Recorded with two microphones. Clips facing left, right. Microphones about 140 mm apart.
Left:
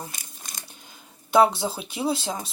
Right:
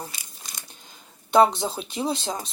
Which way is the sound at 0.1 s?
50° left (ahead or behind).